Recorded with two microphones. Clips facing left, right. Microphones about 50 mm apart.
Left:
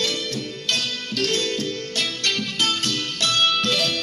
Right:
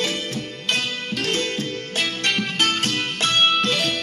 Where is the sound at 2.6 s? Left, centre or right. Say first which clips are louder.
Right 2 dB; right.